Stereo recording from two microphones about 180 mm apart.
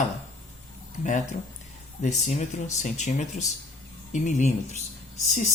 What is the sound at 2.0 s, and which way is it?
Speech, 40° left (ahead or behind).